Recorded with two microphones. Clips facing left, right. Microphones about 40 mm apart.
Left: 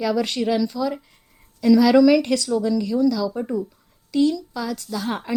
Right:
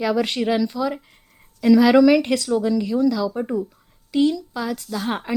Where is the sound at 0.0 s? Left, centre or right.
Centre.